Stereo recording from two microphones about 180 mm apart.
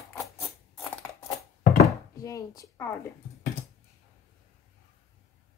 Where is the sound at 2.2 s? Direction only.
20° left (ahead or behind).